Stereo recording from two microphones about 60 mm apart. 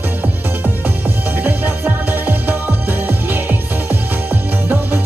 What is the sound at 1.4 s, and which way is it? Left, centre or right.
Music, right.